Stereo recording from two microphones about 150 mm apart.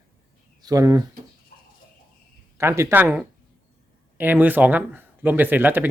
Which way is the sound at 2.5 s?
20° right (ahead or behind).